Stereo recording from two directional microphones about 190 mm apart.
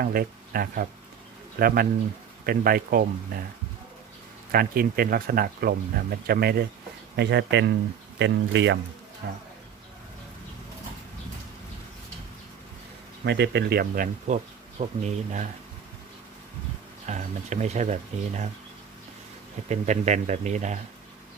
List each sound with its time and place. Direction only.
0.0 s speech: 50° right (ahead or behind)
4.5 s speech: 50° right (ahead or behind)
13.2 s speech: 65° right (ahead or behind); by 14.3 s 50° right (ahead or behind)
14.8 s speech: 35° right (ahead or behind)
17.1 s speech: 40° right (ahead or behind)
19.6 s speech: 35° right (ahead or behind)